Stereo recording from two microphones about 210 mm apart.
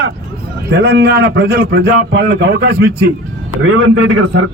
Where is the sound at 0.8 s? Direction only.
55° right (ahead or behind).